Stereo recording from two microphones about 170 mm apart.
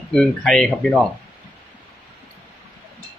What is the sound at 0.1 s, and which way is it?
Speech, 5° left (ahead or behind).